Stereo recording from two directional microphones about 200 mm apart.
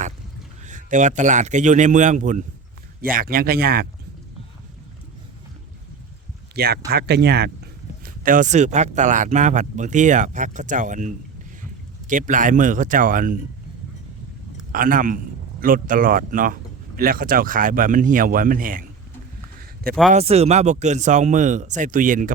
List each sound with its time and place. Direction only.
0.6 s speech: 40° right (ahead or behind)
6.6 s speech: 50° right (ahead or behind)
8.0 s speech: 45° right (ahead or behind)
14.7 s speech: 45° right (ahead or behind)
19.5 s a sound: 45° right (ahead or behind)
20.1 s speech: 30° right (ahead or behind)